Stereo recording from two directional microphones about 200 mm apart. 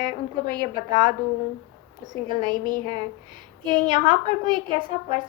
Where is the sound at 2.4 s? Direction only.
20° right (ahead or behind).